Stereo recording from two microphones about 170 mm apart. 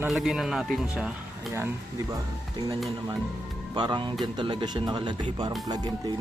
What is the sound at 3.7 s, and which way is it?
Speech, 25° right (ahead or behind).